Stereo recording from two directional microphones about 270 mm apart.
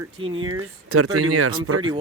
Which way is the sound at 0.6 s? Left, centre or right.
Right.